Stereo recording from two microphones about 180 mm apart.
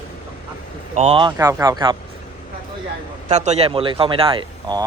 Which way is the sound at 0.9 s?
35° right (ahead or behind).